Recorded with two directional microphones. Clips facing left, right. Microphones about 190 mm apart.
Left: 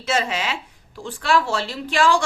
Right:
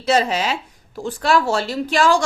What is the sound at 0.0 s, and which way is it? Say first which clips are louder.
Speech: right 5 dB; 35° right (ahead or behind).